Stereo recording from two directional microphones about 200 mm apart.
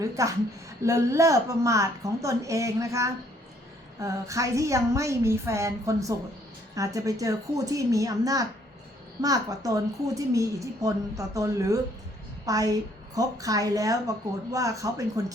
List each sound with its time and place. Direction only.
0.0 s a woman's voice: 15° right (ahead or behind)